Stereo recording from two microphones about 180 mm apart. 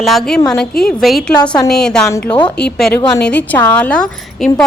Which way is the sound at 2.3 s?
25° left (ahead or behind).